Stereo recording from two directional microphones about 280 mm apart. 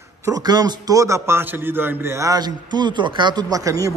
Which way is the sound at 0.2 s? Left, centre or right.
Centre.